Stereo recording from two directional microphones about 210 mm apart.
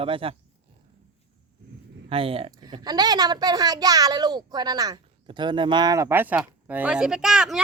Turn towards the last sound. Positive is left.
turn(degrees=-5)  # may be behind; listen again after turning